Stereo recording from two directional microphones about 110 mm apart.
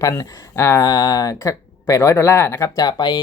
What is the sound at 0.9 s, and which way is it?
Speech, 35° left (ahead or behind).